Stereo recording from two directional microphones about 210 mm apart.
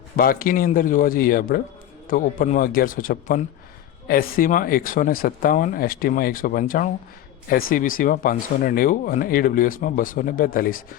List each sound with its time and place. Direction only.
0.2 s speech: 45° left (ahead or behind)